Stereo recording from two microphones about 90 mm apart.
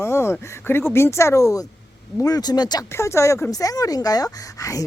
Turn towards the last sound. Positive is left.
turn(degrees=40)  # may be behind; listen again after turning